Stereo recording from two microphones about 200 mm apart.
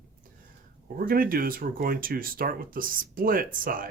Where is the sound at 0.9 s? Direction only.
45° right (ahead or behind).